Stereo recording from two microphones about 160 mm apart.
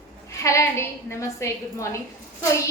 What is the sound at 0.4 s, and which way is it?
A woman's voice, 15° left (ahead or behind).